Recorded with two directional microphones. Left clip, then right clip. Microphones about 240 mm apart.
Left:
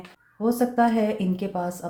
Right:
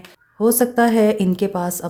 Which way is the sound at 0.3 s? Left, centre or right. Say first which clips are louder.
Right 6 dB; right.